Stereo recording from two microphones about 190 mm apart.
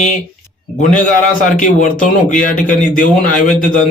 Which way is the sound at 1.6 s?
45° left (ahead or behind).